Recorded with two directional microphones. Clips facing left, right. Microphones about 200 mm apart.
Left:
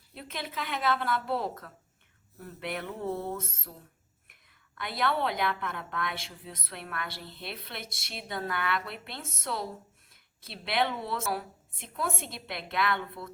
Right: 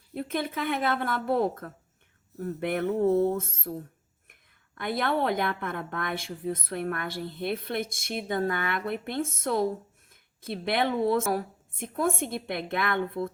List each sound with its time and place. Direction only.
0.1 s a woman's voice: 50° right (ahead or behind)